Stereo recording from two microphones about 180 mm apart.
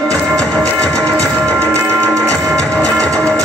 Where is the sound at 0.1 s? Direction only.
5° left (ahead or behind).